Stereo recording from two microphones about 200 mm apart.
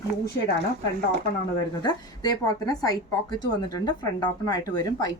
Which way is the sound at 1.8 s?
20° left (ahead or behind).